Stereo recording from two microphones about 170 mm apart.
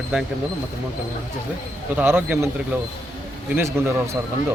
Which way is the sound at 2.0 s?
10° right (ahead or behind).